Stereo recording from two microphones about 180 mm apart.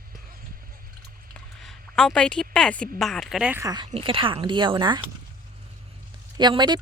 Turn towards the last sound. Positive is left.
turn(degrees=-25)  # may be behind; listen again after turning